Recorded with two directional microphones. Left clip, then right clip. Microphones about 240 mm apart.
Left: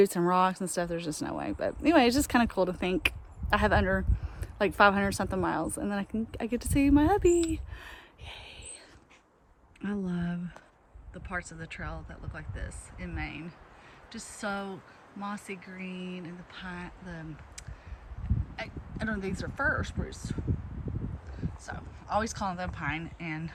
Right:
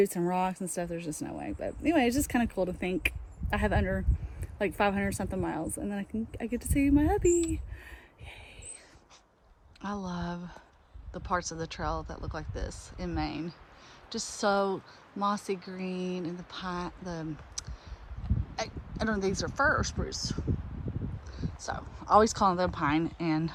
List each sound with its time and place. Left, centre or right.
0.0 s speech: centre
10.1 s speech: centre